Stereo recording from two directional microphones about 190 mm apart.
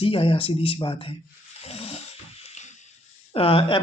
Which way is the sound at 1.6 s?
30° left (ahead or behind).